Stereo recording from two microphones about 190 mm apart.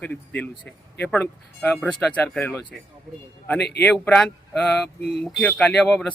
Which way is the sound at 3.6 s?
60° left (ahead or behind).